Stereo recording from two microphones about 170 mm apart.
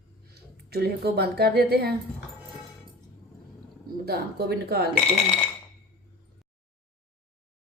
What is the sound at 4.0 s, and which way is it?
Speech, 65° right (ahead or behind).